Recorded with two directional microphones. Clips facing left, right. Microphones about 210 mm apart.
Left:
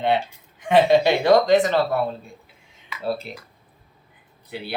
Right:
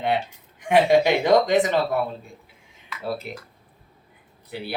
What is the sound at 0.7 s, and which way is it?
Speech, 15° right (ahead or behind).